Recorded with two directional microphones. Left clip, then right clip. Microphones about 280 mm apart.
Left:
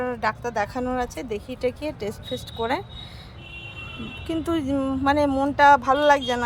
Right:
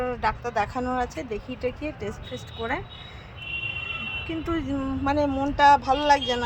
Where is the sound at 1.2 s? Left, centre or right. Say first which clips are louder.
Left 3 dB; centre.